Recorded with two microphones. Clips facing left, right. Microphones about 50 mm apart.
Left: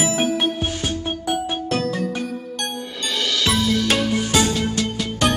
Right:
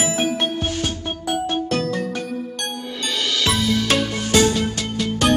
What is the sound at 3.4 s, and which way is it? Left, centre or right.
Music, centre.